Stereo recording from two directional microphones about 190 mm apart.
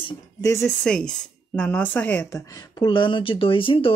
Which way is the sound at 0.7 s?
5° left (ahead or behind).